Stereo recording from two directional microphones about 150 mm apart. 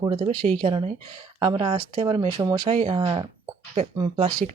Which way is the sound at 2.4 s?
25° right (ahead or behind).